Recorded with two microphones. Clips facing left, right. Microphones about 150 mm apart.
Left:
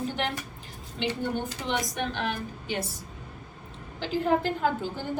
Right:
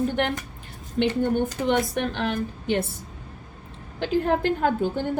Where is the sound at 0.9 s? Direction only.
50° right (ahead or behind).